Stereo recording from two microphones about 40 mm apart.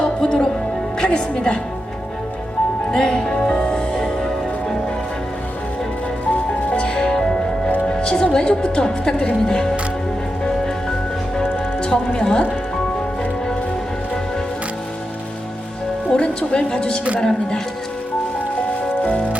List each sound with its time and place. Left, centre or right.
0.0 s music: left
0.9 s a woman's voice: left
2.9 s speech: left
3.2 s music: centre
6.7 s music: left
7.9 s a woman's voice: left
11.8 s speech: centre
16.0 s a woman's voice: left